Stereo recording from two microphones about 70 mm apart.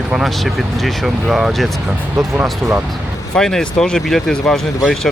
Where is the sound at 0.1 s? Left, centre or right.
Centre.